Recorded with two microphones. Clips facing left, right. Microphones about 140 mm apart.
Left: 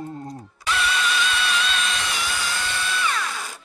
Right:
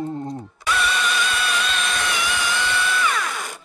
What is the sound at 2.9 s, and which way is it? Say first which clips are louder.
Drill: right 3 dB; 55° right (ahead or behind).